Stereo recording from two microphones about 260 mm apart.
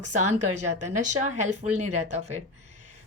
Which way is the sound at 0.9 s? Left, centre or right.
Right.